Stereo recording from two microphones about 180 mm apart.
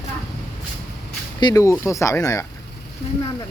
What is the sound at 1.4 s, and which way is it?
Speech, 20° left (ahead or behind).